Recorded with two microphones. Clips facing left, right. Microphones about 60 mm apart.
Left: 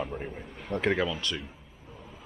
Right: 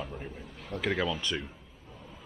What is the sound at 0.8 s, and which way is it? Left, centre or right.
Speech, centre.